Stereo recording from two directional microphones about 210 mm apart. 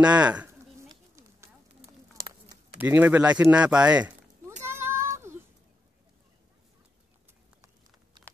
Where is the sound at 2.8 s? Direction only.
10° right (ahead or behind).